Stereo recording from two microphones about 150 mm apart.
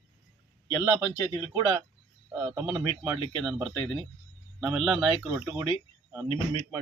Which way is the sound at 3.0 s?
5° right (ahead or behind).